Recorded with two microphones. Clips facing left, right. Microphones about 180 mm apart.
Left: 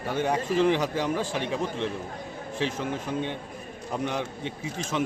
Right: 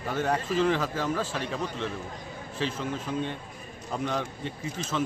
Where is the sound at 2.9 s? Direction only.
60° left (ahead or behind).